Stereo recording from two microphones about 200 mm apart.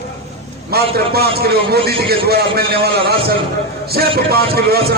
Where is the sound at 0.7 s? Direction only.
50° right (ahead or behind).